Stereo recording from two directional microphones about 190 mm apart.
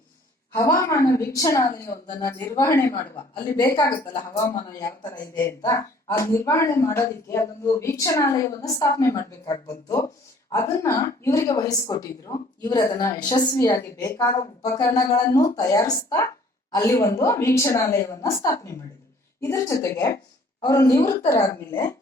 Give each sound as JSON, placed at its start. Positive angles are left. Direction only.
{"t": 0.5, "sound": "speech", "side_deg": 15}
{"t": 4.1, "sound": "a woman's voice", "side_deg": 25}